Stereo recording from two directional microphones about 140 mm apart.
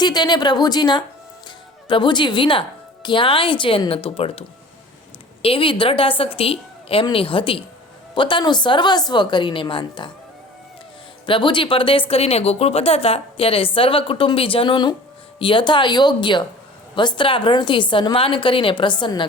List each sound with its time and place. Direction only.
0.0 s speech: 30° left (ahead or behind)
11.3 s speech: 35° left (ahead or behind)